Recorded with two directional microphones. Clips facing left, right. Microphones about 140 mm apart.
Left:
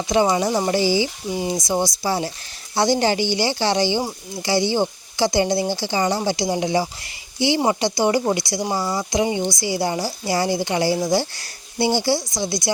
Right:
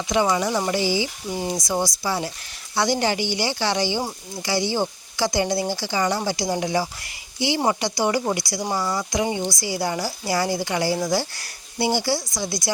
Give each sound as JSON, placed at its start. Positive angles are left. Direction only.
{"t": 0.1, "sound": "speech", "side_deg": 30}
{"t": 1.3, "sound": "speech", "side_deg": 15}
{"t": 1.6, "sound": "speech", "side_deg": 25}